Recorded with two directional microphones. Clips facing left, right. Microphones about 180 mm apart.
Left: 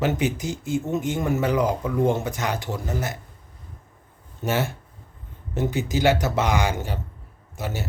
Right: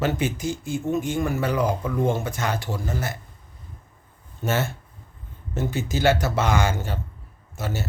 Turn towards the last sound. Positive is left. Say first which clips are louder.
# even
turn(degrees=15)  # may be behind; listen again after turning